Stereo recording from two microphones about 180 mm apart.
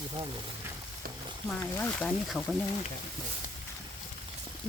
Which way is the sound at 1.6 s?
10° left (ahead or behind).